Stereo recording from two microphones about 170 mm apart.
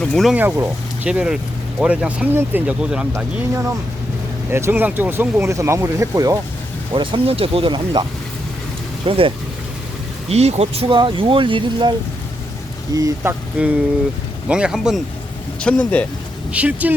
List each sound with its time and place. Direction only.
0.0 s a man's voice: 5° left (ahead or behind)
0.3 s speech: 10° right (ahead or behind)
4.5 s speech: 10° right (ahead or behind); by 8.0 s 30° right (ahead or behind)
9.0 s speech: 30° right (ahead or behind)
13.6 s a man's voice: 5° right (ahead or behind)
16.5 s speech: 10° right (ahead or behind)